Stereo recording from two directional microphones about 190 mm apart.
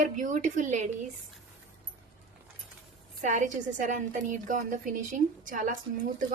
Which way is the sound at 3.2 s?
40° right (ahead or behind).